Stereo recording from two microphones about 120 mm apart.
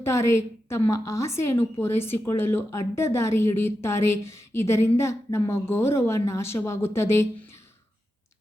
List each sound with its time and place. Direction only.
0.0 s a woman's voice: 25° left (ahead or behind)